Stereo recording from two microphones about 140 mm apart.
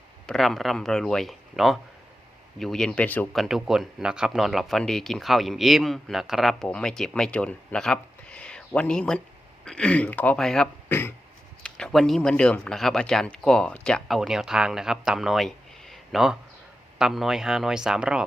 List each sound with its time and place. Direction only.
0.3 s speech: centre (ahead or behind)
3.3 s speech: centre (ahead or behind)
10.8 s a sound: 15° left (ahead or behind)
11.6 s speech: 5° left (ahead or behind)